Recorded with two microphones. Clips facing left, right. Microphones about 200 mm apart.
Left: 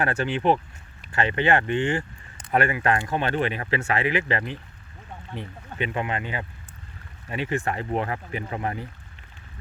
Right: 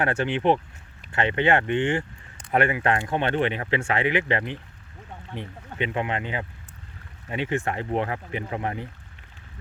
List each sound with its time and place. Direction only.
0.0 s speech: 25° right (ahead or behind)